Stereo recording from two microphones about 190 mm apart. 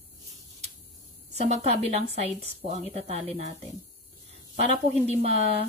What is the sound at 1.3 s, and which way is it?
A woman's voice, 35° right (ahead or behind).